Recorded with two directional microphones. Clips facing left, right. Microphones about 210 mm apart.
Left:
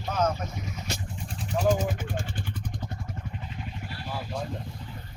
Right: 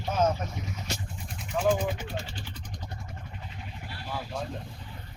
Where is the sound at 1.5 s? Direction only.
40° left (ahead or behind).